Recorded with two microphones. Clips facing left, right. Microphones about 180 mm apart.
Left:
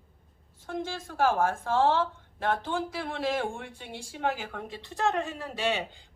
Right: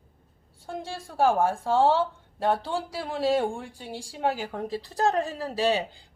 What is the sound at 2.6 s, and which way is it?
Speech, 35° right (ahead or behind).